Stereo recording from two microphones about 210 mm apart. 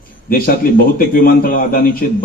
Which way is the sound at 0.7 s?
40° left (ahead or behind).